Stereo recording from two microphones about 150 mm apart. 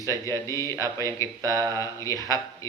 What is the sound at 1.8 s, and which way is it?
Speech, 20° left (ahead or behind).